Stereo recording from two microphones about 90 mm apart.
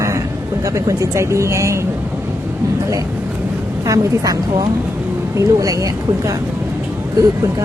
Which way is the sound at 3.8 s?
40° right (ahead or behind).